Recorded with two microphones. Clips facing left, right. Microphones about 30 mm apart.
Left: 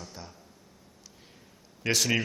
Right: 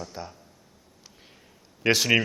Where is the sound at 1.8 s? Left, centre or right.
Right.